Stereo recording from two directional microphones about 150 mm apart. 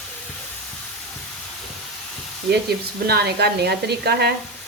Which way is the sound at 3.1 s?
90° right.